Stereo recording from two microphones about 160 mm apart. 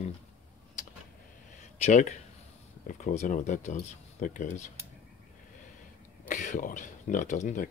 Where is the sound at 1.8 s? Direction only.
45° left (ahead or behind).